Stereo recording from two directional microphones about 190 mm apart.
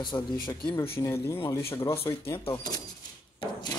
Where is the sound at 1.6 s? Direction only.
15° left (ahead or behind).